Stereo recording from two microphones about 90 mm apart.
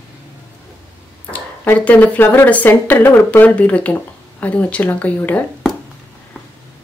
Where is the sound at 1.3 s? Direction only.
20° left (ahead or behind).